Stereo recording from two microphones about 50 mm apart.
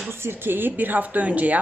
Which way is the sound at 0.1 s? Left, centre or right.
Right.